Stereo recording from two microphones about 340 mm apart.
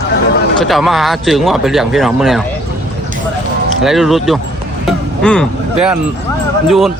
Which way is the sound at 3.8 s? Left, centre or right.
Centre.